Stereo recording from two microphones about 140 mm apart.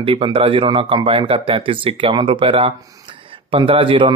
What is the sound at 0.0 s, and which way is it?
Speech, 40° right (ahead or behind).